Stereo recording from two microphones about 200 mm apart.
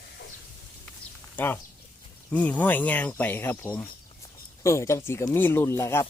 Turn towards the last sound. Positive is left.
turn(degrees=15)  # may be behind; listen again after turning